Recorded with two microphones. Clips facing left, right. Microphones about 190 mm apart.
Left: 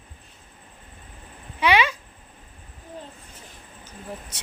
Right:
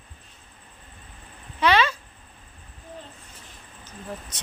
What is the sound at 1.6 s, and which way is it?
Speech, 15° left (ahead or behind).